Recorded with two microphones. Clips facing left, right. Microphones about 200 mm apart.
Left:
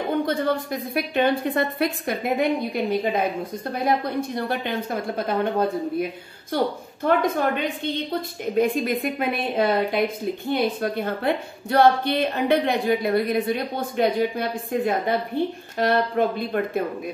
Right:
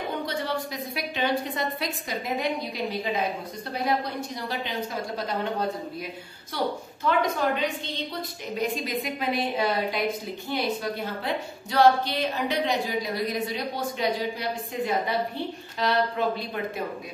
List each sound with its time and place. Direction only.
0.3 s a woman's voice: 50° left (ahead or behind)